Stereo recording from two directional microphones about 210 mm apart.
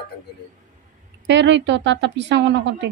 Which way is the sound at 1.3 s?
55° right (ahead or behind).